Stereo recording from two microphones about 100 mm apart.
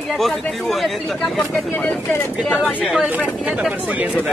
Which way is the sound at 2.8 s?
5° right (ahead or behind).